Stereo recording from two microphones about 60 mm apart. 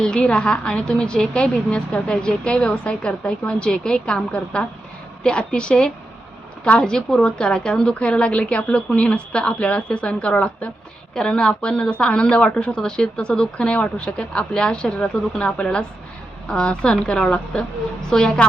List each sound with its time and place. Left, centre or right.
0.0 s a woman's voice: centre